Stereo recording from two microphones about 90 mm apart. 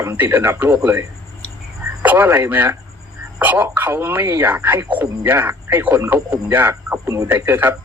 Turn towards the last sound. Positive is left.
turn(degrees=-25)  # may be behind; listen again after turning